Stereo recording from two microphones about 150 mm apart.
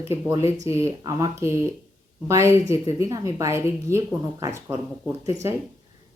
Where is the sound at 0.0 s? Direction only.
15° right (ahead or behind).